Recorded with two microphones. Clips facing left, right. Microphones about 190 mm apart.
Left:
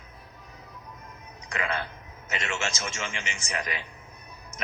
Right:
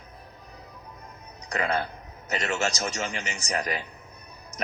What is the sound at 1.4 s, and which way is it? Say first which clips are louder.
A man's voice: right 4 dB; 40° right (ahead or behind).